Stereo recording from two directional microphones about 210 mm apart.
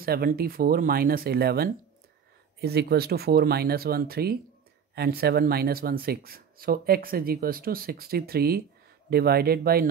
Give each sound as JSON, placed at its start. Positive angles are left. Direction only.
{"t": 0.0, "sound": "speech", "side_deg": -45}